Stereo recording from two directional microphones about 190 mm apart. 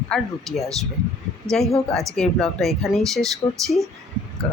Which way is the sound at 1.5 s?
5° left (ahead or behind).